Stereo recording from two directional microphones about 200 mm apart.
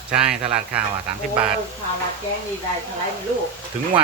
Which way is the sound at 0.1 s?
5° right (ahead or behind).